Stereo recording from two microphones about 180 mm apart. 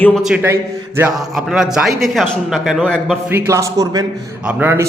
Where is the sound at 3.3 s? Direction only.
15° right (ahead or behind).